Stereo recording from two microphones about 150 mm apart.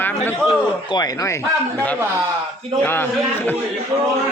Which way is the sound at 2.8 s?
15° left (ahead or behind).